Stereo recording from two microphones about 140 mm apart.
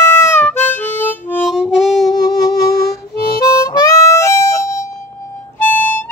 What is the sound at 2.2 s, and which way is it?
Music, 30° left (ahead or behind).